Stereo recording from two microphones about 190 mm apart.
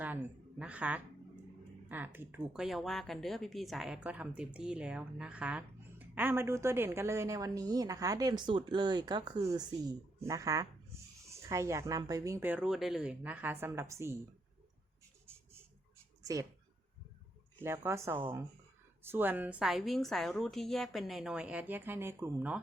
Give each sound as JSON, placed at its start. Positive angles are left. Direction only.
{"t": 0.6, "sound": "a woman's voice", "side_deg": -5}
{"t": 16.2, "sound": "speech", "side_deg": -15}
{"t": 17.6, "sound": "a woman's voice", "side_deg": -15}